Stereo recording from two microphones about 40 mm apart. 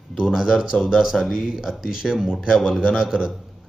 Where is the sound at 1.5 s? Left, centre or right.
Centre.